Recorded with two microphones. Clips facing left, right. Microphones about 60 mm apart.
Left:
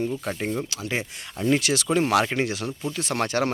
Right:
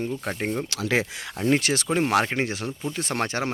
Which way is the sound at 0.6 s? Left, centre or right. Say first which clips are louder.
Right 5 dB; right.